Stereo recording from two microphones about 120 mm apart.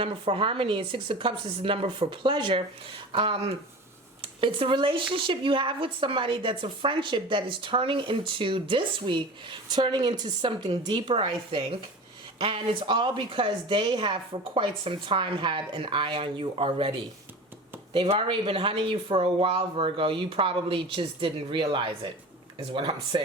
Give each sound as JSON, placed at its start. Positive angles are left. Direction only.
{"t": 0.0, "sound": "speech", "side_deg": -50}
{"t": 17.9, "sound": "speech", "side_deg": -45}